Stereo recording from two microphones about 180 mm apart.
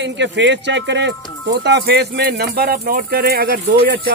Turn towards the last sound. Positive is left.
turn(degrees=-55)  # may be behind; listen again after turning